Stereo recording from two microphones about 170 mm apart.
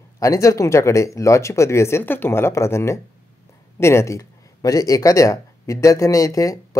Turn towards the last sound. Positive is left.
turn(degrees=20)  # may be behind; listen again after turning